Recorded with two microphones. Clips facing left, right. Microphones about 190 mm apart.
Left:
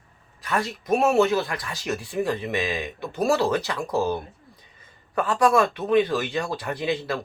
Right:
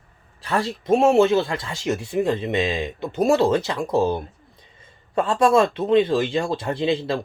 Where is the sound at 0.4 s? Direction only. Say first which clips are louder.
Right 4 dB; 30° right (ahead or behind).